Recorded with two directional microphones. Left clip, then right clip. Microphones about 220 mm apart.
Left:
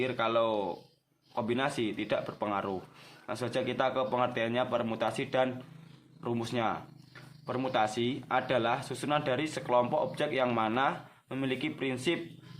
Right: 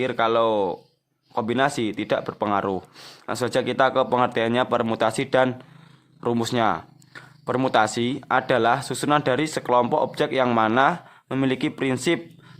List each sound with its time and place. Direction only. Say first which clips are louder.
0.0 s speech: right 8 dB; 50° right (ahead or behind)